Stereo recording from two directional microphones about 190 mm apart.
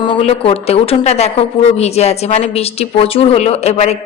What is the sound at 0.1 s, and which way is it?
Speech, 30° left (ahead or behind).